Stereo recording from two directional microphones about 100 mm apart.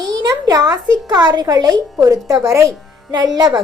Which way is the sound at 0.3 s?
35° right (ahead or behind).